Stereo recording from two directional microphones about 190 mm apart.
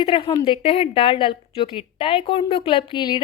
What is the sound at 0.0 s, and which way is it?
A woman's voice, 25° left (ahead or behind).